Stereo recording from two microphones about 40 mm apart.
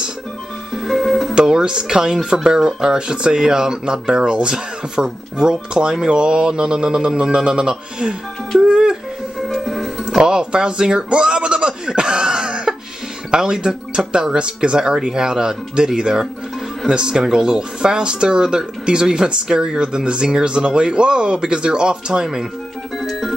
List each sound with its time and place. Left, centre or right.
0.8 s music: centre
1.3 s speech: centre
8.5 s music: centre
9.5 s music: centre
10.0 s a sound: centre
13.3 s speech: centre